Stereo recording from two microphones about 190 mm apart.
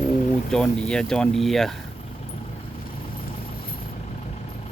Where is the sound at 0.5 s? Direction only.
5° left (ahead or behind).